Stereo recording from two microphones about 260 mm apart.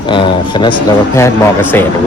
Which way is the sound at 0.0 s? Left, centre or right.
Centre.